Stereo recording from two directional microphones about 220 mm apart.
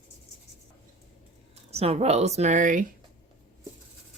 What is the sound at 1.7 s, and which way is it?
Speech, 30° right (ahead or behind).